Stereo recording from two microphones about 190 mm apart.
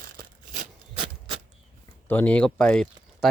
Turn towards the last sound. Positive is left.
turn(degrees=5)  # may be behind; listen again after turning